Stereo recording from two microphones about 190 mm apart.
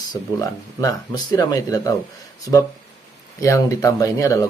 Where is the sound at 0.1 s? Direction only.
20° left (ahead or behind).